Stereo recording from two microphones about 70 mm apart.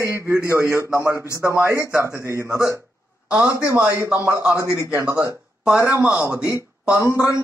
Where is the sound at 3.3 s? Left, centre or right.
Centre.